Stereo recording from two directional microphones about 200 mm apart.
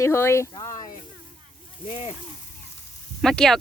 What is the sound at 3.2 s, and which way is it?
Speech, 5° left (ahead or behind).